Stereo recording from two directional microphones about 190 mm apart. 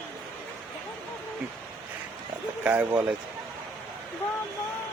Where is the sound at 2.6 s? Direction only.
10° right (ahead or behind).